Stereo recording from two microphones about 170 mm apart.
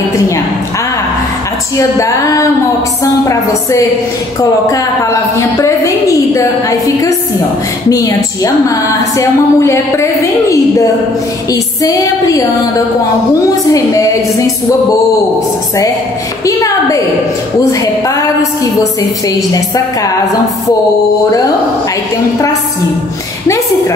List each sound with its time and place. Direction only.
1.8 s a woman's voice: 20° left (ahead or behind)
5.6 s a sound: 20° left (ahead or behind)
7.9 s a woman's voice: 20° left (ahead or behind)
11.5 s a woman's voice: 20° left (ahead or behind)
13.7 s a woman's voice: 20° left (ahead or behind)
16.4 s a woman's voice: 20° left (ahead or behind)